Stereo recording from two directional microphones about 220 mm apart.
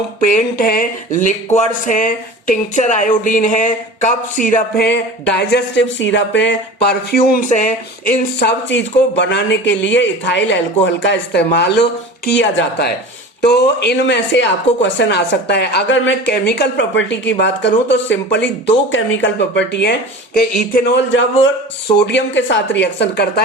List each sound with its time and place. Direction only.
0.2 s speech: 35° left (ahead or behind)